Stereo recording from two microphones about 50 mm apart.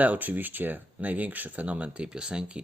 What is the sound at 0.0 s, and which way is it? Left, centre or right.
Speech, right.